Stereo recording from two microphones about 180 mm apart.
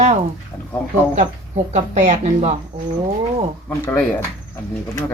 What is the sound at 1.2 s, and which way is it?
Speech, 40° right (ahead or behind).